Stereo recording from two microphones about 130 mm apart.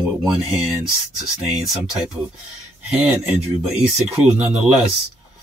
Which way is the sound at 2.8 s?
5° right (ahead or behind).